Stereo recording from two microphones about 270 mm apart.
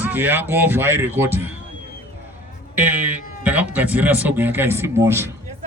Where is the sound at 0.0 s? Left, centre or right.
Centre.